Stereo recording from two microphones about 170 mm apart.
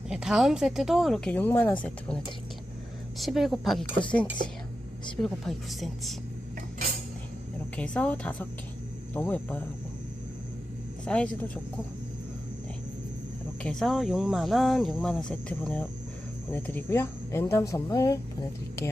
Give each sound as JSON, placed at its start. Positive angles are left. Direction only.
{"t": 0.1, "sound": "speech", "side_deg": -5}
{"t": 3.2, "sound": "speech", "side_deg": 0}
{"t": 5.2, "sound": "speech", "side_deg": 0}
{"t": 7.8, "sound": "speech", "side_deg": 5}
{"t": 11.0, "sound": "speech", "side_deg": 5}
{"t": 13.6, "sound": "speech", "side_deg": 5}